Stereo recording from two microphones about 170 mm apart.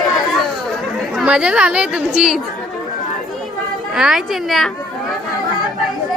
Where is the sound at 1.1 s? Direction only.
5° right (ahead or behind).